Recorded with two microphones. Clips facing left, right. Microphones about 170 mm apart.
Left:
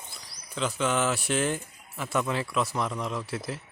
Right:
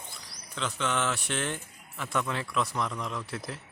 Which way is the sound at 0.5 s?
10° left (ahead or behind).